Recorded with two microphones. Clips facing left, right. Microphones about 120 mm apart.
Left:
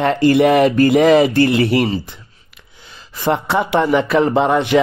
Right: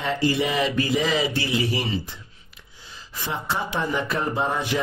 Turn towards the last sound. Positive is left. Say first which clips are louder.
# left 11 dB
turn(degrees=75)  # may be behind; listen again after turning